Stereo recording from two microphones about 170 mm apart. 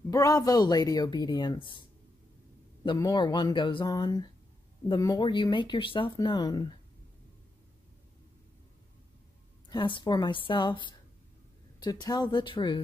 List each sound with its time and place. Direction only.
0.1 s speech: 20° left (ahead or behind)
9.7 s speech: 30° left (ahead or behind)